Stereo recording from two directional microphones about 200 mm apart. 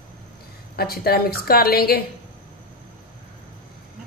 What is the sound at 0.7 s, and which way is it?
A woman's voice, 50° left (ahead or behind).